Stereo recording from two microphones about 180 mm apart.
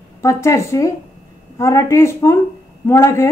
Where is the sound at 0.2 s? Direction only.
15° left (ahead or behind).